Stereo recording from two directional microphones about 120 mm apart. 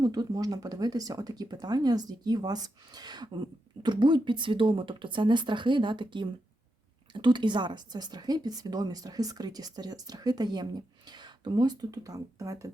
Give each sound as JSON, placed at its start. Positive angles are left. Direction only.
{"t": 0.0, "sound": "a woman's voice", "side_deg": -30}